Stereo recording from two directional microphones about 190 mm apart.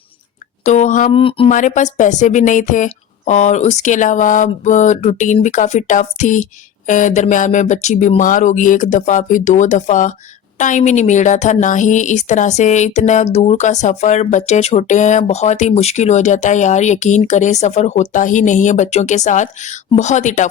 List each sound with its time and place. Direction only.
0.6 s a woman's voice: 40° left (ahead or behind)
1.1 s speech: 30° left (ahead or behind)
1.5 s a woman's voice: 40° left (ahead or behind)